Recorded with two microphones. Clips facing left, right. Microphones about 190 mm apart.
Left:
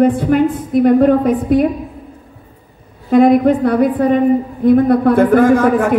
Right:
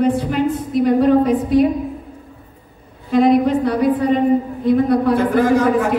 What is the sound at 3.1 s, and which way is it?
A man's voice, 50° left (ahead or behind).